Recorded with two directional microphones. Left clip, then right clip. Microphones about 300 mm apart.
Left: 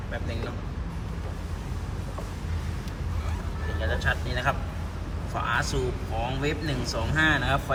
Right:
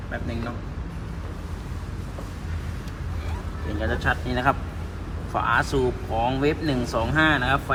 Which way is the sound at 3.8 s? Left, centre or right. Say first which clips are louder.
Right 3 dB; centre.